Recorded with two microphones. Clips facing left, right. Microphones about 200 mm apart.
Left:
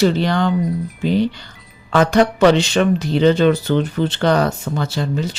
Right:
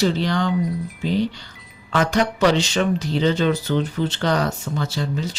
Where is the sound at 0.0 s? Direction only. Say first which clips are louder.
Left 4 dB; 60° left (ahead or behind).